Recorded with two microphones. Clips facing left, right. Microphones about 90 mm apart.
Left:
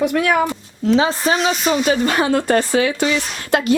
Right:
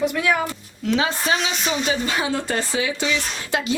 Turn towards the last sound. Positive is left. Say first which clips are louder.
# left 7 dB
turn(degrees=55)  # may be behind; listen again after turning